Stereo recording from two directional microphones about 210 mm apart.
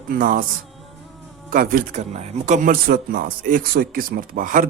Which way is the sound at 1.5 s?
45° right (ahead or behind).